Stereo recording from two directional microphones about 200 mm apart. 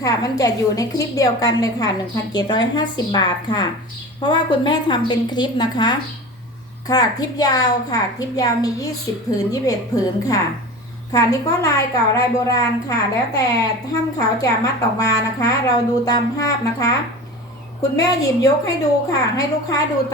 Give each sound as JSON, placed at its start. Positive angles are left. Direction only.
{"t": 0.0, "sound": "a woman's voice", "side_deg": 15}
{"t": 17.9, "sound": "a woman's voice", "side_deg": 20}